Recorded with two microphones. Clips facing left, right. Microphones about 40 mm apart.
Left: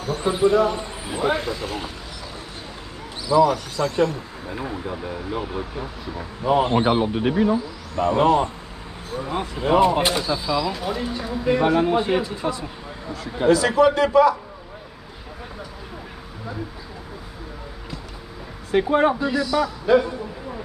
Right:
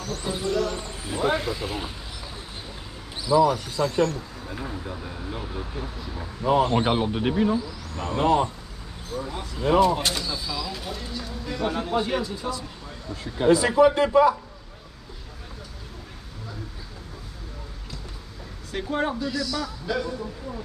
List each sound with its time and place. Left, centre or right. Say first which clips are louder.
0.0 s speech: left 9 dB; left; by 1.9 s centre
3.3 s speech: left 2 dB; centre
4.0 s speech: left 3 dB; centre; by 6.2 s left
6.8 s speech: left 4 dB; centre
7.5 s speech: left 4 dB; left
9.1 s speech: left 5 dB; left; by 11.0 s centre
11.0 s speech: left 8 dB; left
13.7 s speech: left 1 dB; left
18.7 s speech: left 9 dB; left